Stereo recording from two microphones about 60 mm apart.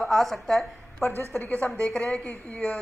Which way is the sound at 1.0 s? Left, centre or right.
Left.